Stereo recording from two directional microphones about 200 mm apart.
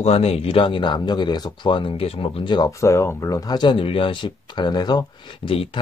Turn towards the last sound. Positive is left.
turn(degrees=25)  # may be behind; listen again after turning